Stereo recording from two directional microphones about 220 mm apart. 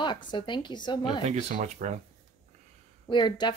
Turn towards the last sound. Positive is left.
turn(degrees=20)  # may be behind; listen again after turning